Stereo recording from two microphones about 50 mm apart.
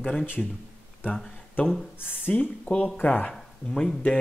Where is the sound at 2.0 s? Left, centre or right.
Left.